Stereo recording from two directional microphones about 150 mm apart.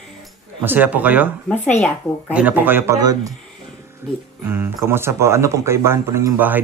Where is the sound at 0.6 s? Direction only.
10° right (ahead or behind).